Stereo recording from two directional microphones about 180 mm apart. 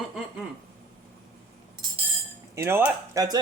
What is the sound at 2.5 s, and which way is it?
Speech, 15° right (ahead or behind).